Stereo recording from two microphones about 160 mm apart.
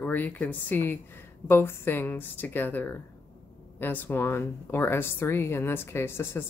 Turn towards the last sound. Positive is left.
turn(degrees=15)  # may be behind; listen again after turning